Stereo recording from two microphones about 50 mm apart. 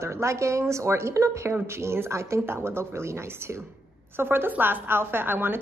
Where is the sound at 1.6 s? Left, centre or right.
Right.